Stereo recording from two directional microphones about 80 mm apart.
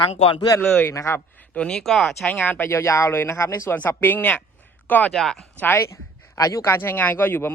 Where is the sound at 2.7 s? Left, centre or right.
Left; by 5.1 s centre.